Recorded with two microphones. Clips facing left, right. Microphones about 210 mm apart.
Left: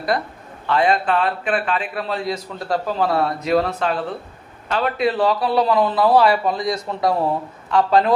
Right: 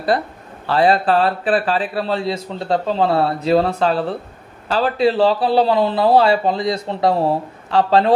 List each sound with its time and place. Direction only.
0.7 s a man's voice: 35° right (ahead or behind)